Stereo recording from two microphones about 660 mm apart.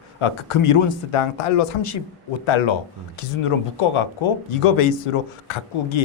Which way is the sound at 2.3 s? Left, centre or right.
Left.